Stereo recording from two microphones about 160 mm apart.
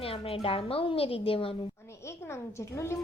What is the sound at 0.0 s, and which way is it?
A woman's voice, 35° left (ahead or behind).